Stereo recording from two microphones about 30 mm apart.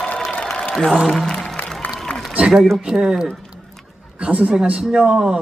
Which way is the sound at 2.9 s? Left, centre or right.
Right.